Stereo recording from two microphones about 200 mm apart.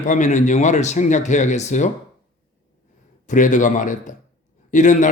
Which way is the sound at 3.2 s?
40° left (ahead or behind).